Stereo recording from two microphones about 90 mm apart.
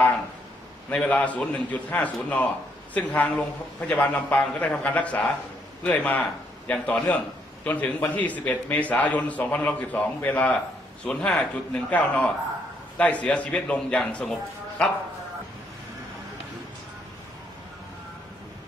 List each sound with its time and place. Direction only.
0.8 s a man's voice: 15° left (ahead or behind)